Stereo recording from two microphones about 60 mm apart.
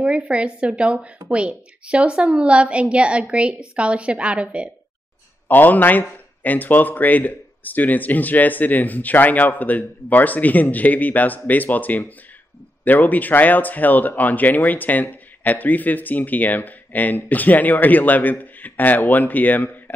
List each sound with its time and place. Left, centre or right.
0.0 s speech: centre
5.5 s speech: left